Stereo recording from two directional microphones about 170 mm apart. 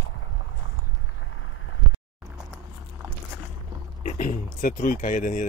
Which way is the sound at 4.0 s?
50° left (ahead or behind).